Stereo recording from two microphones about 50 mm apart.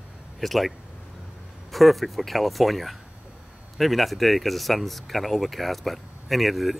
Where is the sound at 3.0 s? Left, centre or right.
Centre.